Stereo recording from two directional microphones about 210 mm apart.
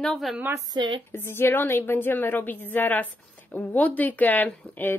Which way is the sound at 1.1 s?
10° left (ahead or behind).